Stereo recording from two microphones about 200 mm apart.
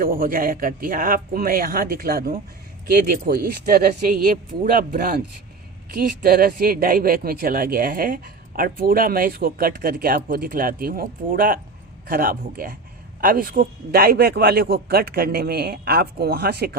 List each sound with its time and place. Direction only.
0.0 s speech: 45° right (ahead or behind)